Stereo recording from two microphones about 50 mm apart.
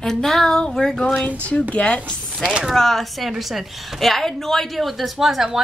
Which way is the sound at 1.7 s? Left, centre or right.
Left.